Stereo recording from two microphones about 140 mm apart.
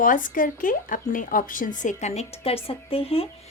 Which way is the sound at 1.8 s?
60° left (ahead or behind).